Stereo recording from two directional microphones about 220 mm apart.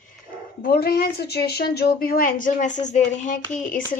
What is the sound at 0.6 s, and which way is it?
Speech, 45° left (ahead or behind).